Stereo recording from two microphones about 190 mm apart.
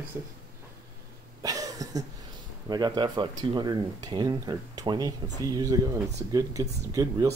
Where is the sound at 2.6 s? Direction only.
20° right (ahead or behind).